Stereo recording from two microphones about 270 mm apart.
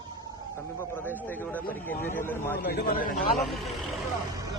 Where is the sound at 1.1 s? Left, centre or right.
Centre.